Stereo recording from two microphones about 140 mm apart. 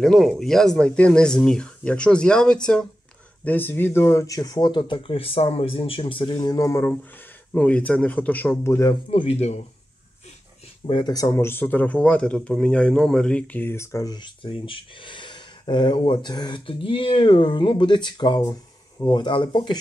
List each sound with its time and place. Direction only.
0.0 s speech: centre (ahead or behind); by 6.3 s 40° left (ahead or behind)
6.4 s speech: 25° left (ahead or behind)
6.9 s speech: 10° left (ahead or behind)
9.1 s speech: 45° left (ahead or behind)
10.9 s speech: 30° left (ahead or behind)
11.2 s speech: 15° left (ahead or behind); by 19.8 s 35° left (ahead or behind)